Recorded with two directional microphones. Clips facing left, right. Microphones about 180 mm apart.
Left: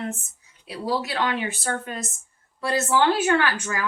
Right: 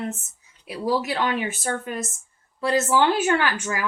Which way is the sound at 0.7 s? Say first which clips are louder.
Right 3 dB; 20° right (ahead or behind).